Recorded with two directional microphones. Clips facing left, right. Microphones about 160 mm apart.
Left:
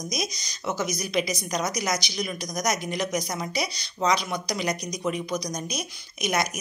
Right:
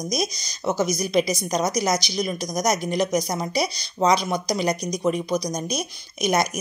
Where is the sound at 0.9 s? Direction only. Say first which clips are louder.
Right 5 dB; 30° right (ahead or behind).